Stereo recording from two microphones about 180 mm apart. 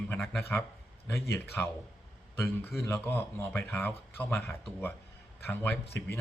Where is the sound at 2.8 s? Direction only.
10° left (ahead or behind).